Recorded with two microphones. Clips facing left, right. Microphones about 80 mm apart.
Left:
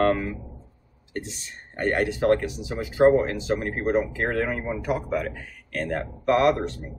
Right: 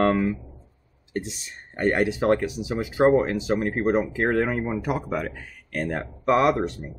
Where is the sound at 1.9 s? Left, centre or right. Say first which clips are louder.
Left 2 dB; centre.